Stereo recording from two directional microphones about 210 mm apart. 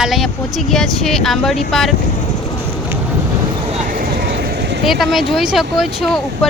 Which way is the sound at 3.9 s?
45° right (ahead or behind).